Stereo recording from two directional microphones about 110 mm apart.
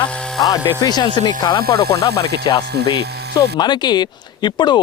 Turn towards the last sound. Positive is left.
turn(degrees=40)  # may be behind; listen again after turning